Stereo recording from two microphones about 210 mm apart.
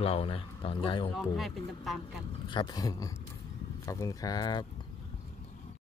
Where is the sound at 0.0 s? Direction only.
30° left (ahead or behind).